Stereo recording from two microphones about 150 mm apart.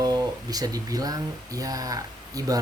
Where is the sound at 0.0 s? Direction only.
25° right (ahead or behind).